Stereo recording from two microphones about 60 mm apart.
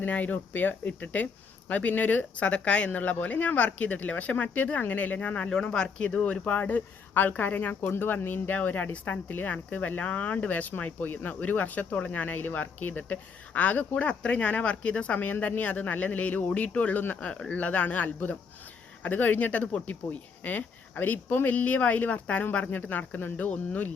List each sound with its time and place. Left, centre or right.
0.0 s a woman's voice: left